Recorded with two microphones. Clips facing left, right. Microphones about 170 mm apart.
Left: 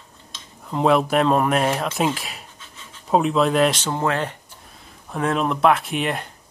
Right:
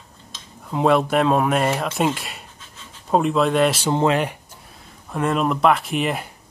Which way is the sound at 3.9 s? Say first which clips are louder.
Right 4 dB; 15° right (ahead or behind).